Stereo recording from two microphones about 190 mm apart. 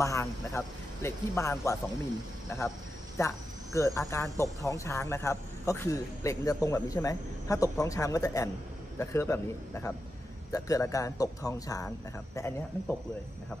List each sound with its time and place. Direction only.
0.0 s speech: 15° left (ahead or behind)
3.2 s speech: 15° left (ahead or behind)